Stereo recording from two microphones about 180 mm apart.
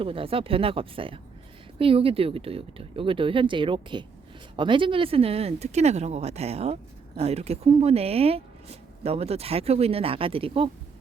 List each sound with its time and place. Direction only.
0.0 s speech: 30° right (ahead or behind)